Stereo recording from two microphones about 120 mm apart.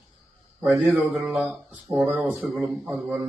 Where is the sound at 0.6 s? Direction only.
15° right (ahead or behind).